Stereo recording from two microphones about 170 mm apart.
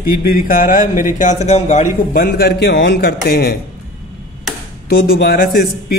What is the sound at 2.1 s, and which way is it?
A man's voice, 65° left (ahead or behind).